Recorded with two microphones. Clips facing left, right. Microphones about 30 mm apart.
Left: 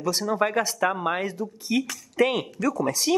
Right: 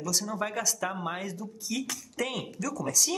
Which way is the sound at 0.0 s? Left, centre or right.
Left.